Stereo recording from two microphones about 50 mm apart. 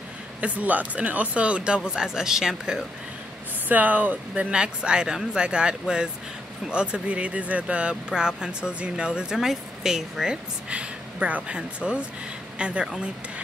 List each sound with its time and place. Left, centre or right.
0.4 s speech: right; by 2.8 s centre
3.6 s speech: right
4.5 s speech: centre
10.7 s a woman's voice: right